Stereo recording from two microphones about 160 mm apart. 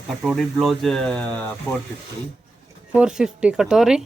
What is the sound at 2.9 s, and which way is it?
Speech, 5° right (ahead or behind).